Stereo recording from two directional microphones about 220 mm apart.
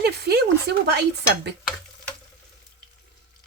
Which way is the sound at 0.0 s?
45° right (ahead or behind).